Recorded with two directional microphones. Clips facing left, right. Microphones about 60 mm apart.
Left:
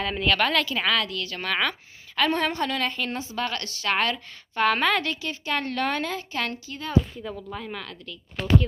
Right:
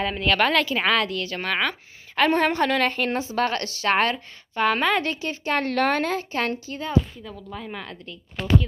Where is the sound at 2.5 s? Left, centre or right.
Right.